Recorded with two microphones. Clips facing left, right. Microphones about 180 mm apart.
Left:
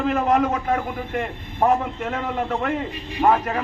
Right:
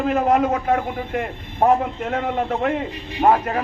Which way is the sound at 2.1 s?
40° right (ahead or behind).